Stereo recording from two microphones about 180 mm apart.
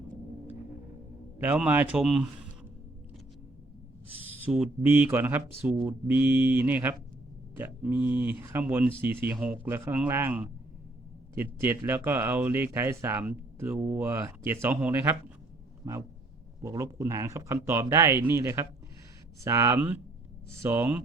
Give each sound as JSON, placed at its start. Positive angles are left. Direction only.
{"t": 1.4, "sound": "speech", "side_deg": -10}
{"t": 4.1, "sound": "speech", "side_deg": -5}